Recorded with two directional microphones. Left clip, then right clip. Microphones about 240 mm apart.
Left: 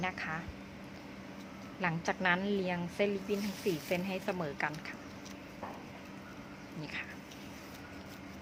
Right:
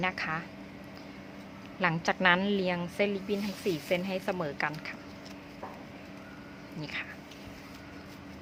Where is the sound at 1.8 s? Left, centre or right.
Centre.